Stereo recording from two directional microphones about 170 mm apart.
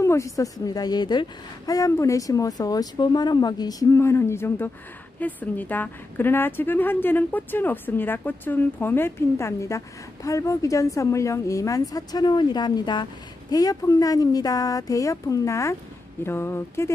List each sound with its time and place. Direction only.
0.0 s a woman's voice: 15° left (ahead or behind)